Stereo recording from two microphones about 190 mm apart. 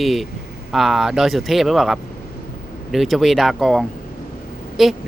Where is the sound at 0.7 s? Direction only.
Centre (ahead or behind).